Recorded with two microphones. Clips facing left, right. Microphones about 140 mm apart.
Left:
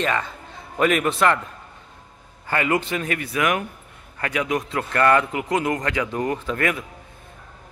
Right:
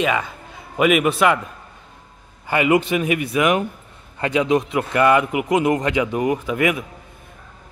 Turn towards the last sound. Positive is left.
turn(degrees=-15)  # may be behind; listen again after turning